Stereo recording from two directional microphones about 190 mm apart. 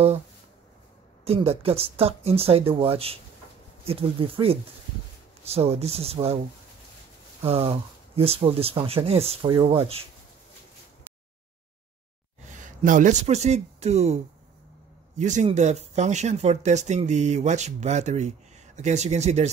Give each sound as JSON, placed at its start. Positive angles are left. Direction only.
{"t": 1.2, "sound": "speech", "side_deg": -30}
{"t": 7.4, "sound": "speech", "side_deg": -30}
{"t": 12.5, "sound": "speech", "side_deg": -40}